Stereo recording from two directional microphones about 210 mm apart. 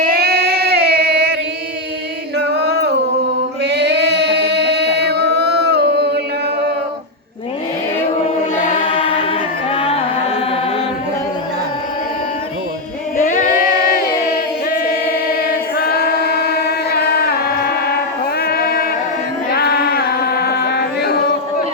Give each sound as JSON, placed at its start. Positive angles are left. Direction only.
{"t": 0.0, "sound": "a sound", "side_deg": -45}
{"t": 2.5, "sound": "a sound", "side_deg": -50}
{"t": 3.6, "sound": "singing", "side_deg": -55}
{"t": 8.9, "sound": "choir", "side_deg": 25}
{"t": 9.7, "sound": "music", "side_deg": 25}
{"t": 13.1, "sound": "music", "side_deg": 40}
{"t": 15.4, "sound": "choir", "side_deg": 45}
{"t": 18.4, "sound": "music", "side_deg": 45}
{"t": 19.5, "sound": "a sound", "side_deg": 50}